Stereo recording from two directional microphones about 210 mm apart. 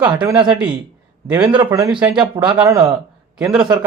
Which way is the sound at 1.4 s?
20° right (ahead or behind).